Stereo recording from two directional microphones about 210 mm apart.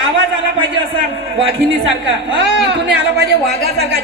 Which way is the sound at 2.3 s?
55° right (ahead or behind).